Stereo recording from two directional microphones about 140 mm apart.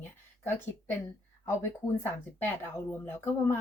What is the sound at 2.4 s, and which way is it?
Speech, 15° left (ahead or behind).